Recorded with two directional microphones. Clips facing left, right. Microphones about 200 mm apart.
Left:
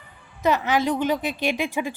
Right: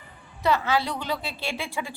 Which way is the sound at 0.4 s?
20° left (ahead or behind).